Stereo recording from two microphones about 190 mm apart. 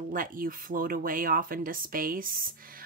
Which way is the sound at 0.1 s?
45° right (ahead or behind).